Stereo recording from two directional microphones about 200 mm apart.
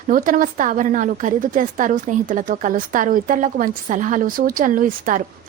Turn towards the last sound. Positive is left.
turn(degrees=-40)  # may be behind; listen again after turning